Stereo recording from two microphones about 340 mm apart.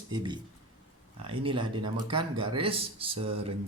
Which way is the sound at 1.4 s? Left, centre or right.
Centre.